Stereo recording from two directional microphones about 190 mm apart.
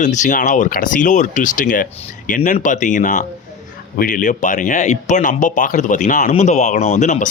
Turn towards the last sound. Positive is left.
turn(degrees=40)  # may be behind; listen again after turning